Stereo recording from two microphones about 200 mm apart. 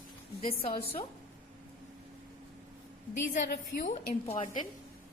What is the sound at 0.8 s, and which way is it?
Speech, 30° left (ahead or behind).